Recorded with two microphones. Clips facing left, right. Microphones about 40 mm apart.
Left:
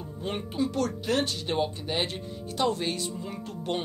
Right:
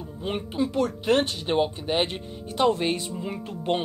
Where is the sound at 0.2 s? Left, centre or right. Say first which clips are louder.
Right 2 dB; centre.